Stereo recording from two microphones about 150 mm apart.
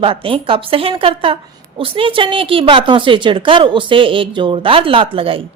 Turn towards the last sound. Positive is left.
turn(degrees=-40)  # may be behind; listen again after turning